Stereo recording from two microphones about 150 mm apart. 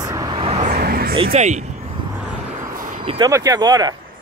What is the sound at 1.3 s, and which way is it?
Speech, 50° right (ahead or behind).